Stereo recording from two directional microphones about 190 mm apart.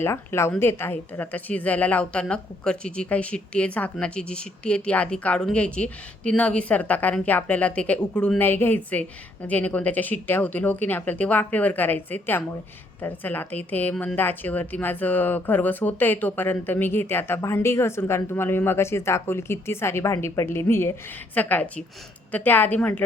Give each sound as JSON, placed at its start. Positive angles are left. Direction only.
{"t": 0.0, "sound": "a woman's voice", "side_deg": 15}